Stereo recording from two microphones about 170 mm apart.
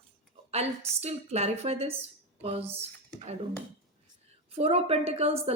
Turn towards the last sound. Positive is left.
turn(degrees=-35)  # may be behind; listen again after turning